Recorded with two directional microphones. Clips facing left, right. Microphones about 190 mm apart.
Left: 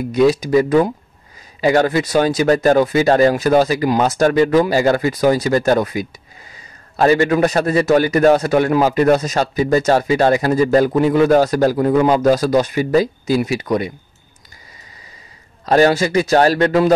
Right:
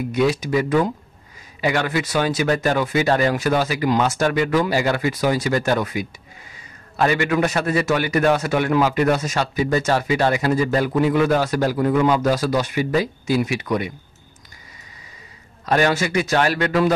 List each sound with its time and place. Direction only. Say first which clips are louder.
0.1 s a man's voice: left 7 dB; 35° left (ahead or behind)
15.6 s a man's voice: left 6 dB; 35° left (ahead or behind)